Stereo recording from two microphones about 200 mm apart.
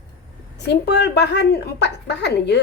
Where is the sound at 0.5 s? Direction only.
55° left (ahead or behind).